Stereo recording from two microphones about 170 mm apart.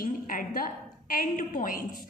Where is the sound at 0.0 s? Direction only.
55° left (ahead or behind).